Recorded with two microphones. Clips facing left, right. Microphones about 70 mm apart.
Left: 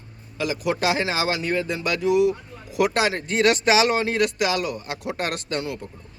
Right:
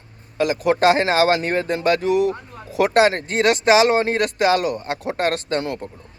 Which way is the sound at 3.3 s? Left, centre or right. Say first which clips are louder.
Right 3 dB; right.